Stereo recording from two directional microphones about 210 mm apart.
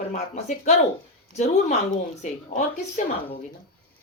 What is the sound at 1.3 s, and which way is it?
A woman's voice, 30° left (ahead or behind).